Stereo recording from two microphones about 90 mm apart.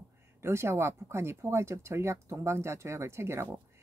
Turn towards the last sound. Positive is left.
turn(degrees=-30)  # may be behind; listen again after turning